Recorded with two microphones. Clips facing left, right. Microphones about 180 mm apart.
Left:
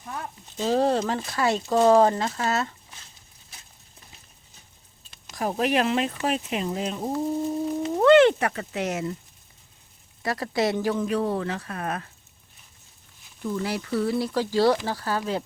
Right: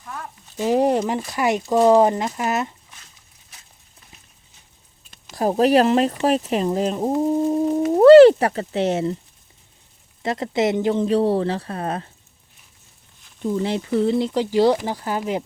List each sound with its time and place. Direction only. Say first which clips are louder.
0.0 s a sound: even; 25° left (ahead or behind)
0.5 s speech: right 4 dB; 15° right (ahead or behind)
5.3 s speech: right 8 dB; 35° right (ahead or behind)
7.2 s a sound: right 7 dB; 45° right (ahead or behind)
7.9 s speech: right 8 dB; 40° right (ahead or behind)
10.2 s speech: right 4 dB; 20° right (ahead or behind)
13.4 s speech: right 6 dB; 25° right (ahead or behind)